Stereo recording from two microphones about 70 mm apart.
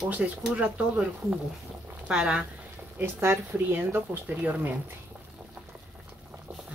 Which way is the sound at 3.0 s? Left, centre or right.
Right.